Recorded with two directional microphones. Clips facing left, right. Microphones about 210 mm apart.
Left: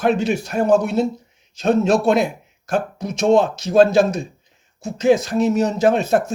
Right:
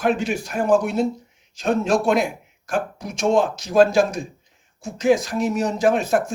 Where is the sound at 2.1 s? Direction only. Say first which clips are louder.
Left 3 dB; 25° left (ahead or behind).